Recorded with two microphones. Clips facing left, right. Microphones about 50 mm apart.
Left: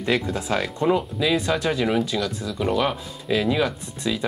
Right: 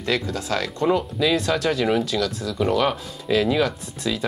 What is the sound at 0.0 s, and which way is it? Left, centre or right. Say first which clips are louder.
Speech: left 1 dB; centre.